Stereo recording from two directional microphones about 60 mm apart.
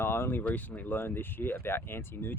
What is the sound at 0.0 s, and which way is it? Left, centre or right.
Speech, left.